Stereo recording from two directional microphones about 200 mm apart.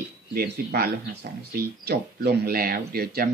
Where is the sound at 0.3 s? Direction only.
50° right (ahead or behind).